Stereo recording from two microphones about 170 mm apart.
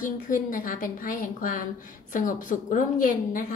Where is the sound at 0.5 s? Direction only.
50° left (ahead or behind).